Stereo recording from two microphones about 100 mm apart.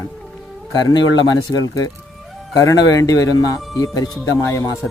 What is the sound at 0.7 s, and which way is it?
Speech, 40° left (ahead or behind).